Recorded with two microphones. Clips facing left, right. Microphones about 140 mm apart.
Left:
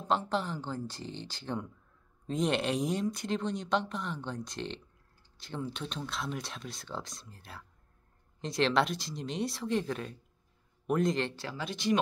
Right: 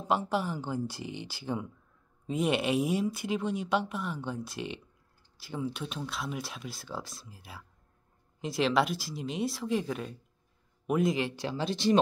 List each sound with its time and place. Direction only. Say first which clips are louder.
0.0 s speech: right 2 dB; 10° right (ahead or behind)
11.4 s speech: right 4 dB; 30° right (ahead or behind)